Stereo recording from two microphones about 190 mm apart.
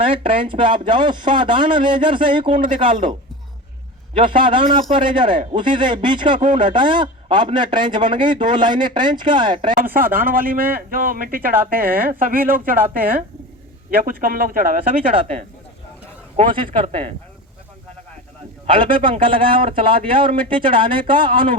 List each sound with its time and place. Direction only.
0.0 s a man's voice: 30° right (ahead or behind)
4.1 s a man's voice: 25° right (ahead or behind)
9.9 s a man's voice: 50° right (ahead or behind)
16.5 s a man's voice: 25° right (ahead or behind)
18.6 s a man's voice: 25° right (ahead or behind)